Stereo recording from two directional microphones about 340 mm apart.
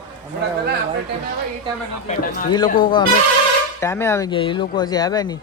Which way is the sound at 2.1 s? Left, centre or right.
Left.